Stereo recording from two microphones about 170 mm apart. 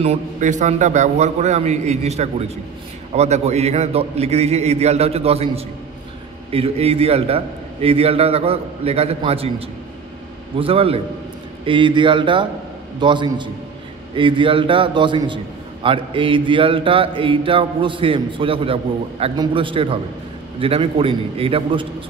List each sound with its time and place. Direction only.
0.0 s a man's voice: 40° right (ahead or behind)